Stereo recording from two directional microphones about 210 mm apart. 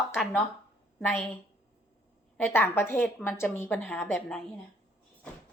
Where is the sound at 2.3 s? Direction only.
10° left (ahead or behind).